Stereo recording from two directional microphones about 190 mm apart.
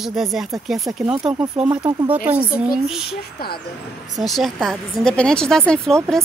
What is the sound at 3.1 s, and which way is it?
Speech, 55° left (ahead or behind).